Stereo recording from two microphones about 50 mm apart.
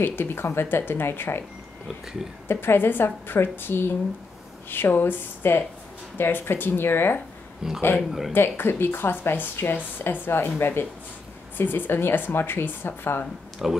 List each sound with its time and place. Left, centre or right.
0.0 s speech: left
2.4 s speech: left
7.6 s speech: centre
8.3 s speech: left
13.6 s speech: centre